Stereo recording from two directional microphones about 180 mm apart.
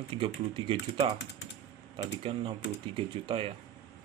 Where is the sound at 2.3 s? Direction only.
30° right (ahead or behind).